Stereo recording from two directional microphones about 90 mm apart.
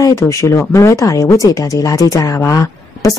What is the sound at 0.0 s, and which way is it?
Speech, 35° left (ahead or behind).